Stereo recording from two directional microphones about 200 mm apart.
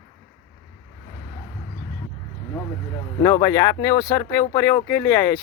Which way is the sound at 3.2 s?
15° left (ahead or behind).